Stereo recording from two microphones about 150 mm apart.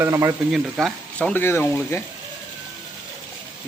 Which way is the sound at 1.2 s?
15° left (ahead or behind).